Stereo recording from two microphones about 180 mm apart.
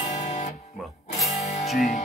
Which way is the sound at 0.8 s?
Centre (ahead or behind).